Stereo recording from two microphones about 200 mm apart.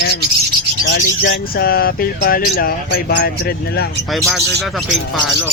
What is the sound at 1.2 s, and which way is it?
Speech, 60° left (ahead or behind).